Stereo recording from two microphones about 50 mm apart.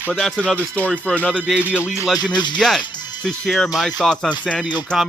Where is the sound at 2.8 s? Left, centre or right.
Centre.